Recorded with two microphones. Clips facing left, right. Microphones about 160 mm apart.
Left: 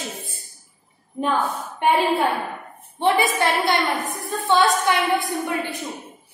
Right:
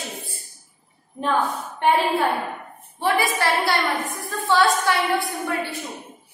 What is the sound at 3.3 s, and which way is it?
A woman's voice, 20° left (ahead or behind).